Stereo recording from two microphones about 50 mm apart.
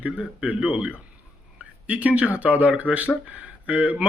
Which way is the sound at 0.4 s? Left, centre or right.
Right.